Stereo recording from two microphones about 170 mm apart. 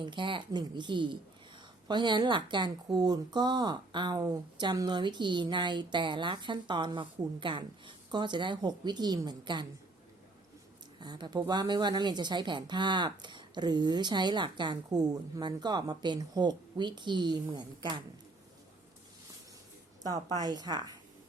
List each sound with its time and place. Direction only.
0.0 s speech: 30° right (ahead or behind)
11.0 s speech: 25° right (ahead or behind)
20.0 s speech: 20° right (ahead or behind)